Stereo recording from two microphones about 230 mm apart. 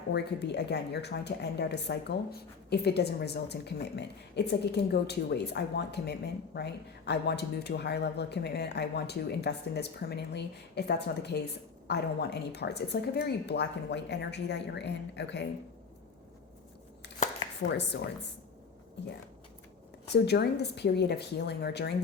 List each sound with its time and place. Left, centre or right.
0.1 s speech: left
20.1 s speech: left